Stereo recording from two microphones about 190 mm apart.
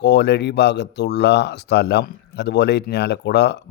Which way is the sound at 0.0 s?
60° left (ahead or behind).